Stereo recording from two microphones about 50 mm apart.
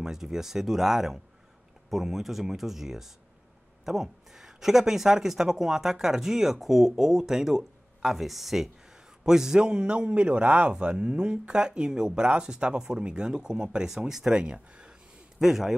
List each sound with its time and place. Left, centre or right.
0.0 s a man's voice: centre